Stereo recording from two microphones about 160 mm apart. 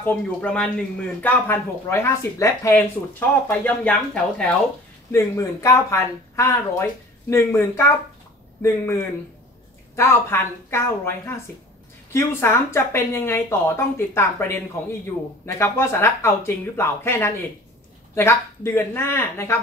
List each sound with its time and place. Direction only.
0.0 s a man's voice: 10° left (ahead or behind)
5.1 s a man's voice: 20° left (ahead or behind)